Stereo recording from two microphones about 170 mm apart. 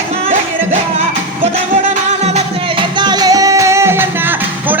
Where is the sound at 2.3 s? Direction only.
30° right (ahead or behind).